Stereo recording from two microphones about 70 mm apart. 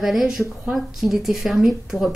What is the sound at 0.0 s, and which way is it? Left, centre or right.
A woman's voice, centre.